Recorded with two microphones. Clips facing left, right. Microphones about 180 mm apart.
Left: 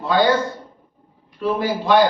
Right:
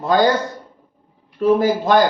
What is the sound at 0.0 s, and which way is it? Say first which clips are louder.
Speech: right 2 dB; 45° right (ahead or behind).